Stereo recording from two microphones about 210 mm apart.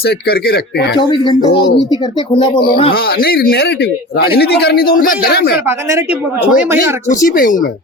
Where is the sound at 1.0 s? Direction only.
20° left (ahead or behind).